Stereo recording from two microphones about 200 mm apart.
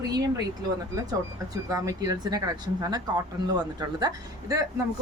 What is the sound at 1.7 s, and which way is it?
A woman's voice, 15° right (ahead or behind).